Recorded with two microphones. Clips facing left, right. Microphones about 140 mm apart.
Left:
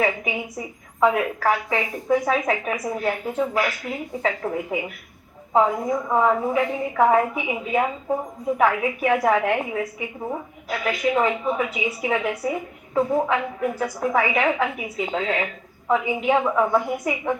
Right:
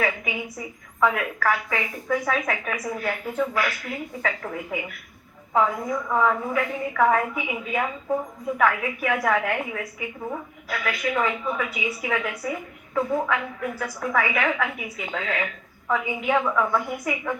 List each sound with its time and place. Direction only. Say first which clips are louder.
0.0 s a woman's voice: left 3 dB; 20° left (ahead or behind)